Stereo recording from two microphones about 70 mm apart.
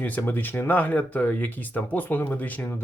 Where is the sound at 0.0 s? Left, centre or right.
Left.